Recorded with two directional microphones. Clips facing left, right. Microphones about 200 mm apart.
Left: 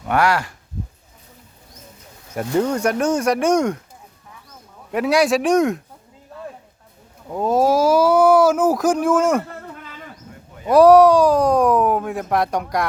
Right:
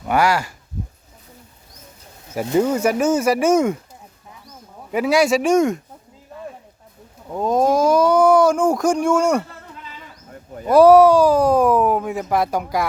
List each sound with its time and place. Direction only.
0.0 s speech: centre (ahead or behind)
2.3 s speech: 5° right (ahead or behind)
4.9 s speech: centre (ahead or behind)
7.3 s speech: 5° left (ahead or behind)
9.7 s a sound: 50° left (ahead or behind)
10.7 s speech: centre (ahead or behind)